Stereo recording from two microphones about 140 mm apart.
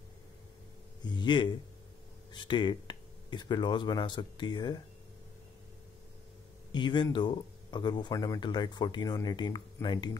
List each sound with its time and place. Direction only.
1.0 s speech: 30° left (ahead or behind)
6.7 s speech: 35° left (ahead or behind)